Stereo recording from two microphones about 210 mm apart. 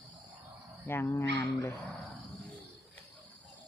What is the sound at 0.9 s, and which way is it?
Speech, 10° left (ahead or behind).